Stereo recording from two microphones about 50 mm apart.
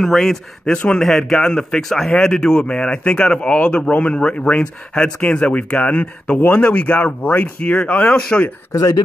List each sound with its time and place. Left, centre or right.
0.0 s speech: centre
0.7 s speech: left
1.0 s speech: centre; by 8.1 s left
8.1 s speech: centre